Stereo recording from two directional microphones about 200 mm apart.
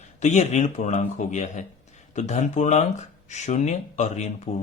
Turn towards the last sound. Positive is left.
turn(degrees=35)  # may be behind; listen again after turning